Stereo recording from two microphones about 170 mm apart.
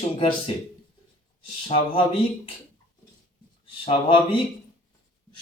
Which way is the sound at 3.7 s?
30° left (ahead or behind).